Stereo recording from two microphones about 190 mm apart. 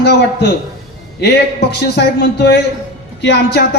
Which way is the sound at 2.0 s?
60° left (ahead or behind).